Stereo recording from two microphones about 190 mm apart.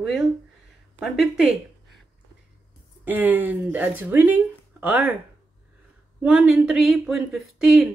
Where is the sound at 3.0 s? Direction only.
10° right (ahead or behind).